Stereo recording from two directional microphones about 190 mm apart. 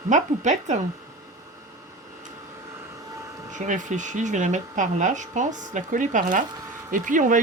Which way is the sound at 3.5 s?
40° right (ahead or behind).